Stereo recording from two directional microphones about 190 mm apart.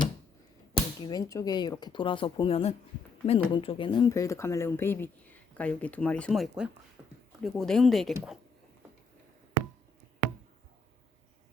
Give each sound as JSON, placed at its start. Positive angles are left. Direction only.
{"t": 1.0, "sound": "speech", "side_deg": 20}